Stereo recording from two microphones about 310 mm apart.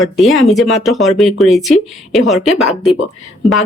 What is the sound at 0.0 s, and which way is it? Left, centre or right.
Speech, centre.